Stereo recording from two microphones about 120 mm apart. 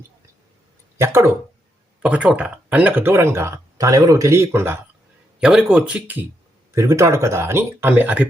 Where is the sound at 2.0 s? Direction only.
10° right (ahead or behind).